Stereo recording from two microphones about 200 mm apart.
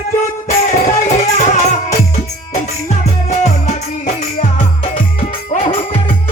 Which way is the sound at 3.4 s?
35° left (ahead or behind).